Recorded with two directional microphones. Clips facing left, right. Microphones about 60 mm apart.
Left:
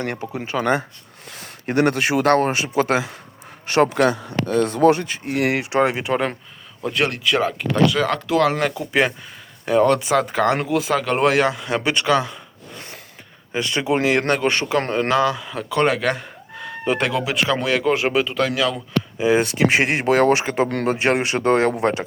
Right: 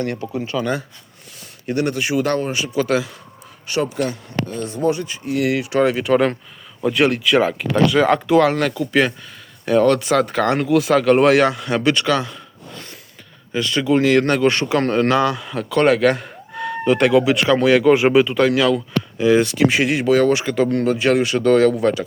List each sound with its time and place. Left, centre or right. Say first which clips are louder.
0.0 s a man's voice: right 3 dB; left
0.5 s speech: left 4 dB; left
3.7 s speech: left 5 dB; left
3.9 s speech: left 4 dB; left
6.1 s speech: right 5 dB; centre
6.8 s speech: right 4 dB; centre
8.5 s a man's voice: right 2 dB; centre
14.3 s speech: right 3 dB; centre
14.8 s speech: right 3 dB; centre
15.1 s a man's voice: right 1 dB; centre
19.2 s speech: right 3 dB; left